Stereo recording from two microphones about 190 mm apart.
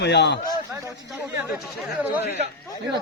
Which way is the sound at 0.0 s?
65° left (ahead or behind).